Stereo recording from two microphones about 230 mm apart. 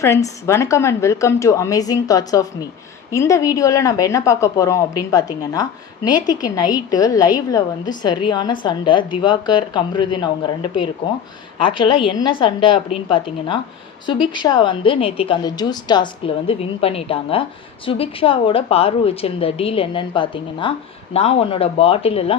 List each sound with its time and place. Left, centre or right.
0.0 s a woman's voice: centre